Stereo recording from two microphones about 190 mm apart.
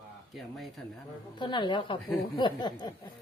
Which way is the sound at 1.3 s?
25° left (ahead or behind).